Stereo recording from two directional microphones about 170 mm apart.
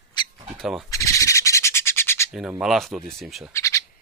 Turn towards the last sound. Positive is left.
turn(degrees=15)  # may be behind; listen again after turning